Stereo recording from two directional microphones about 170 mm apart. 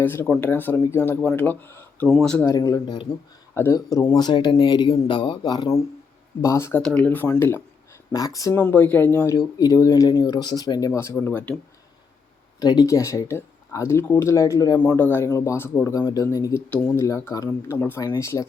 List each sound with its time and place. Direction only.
0.0 s speech: 10° left (ahead or behind)
2.5 s speech: 20° left (ahead or behind)
3.5 s speech: 15° left (ahead or behind)
8.5 s speech: 10° left (ahead or behind)
12.5 s speech: 20° left (ahead or behind)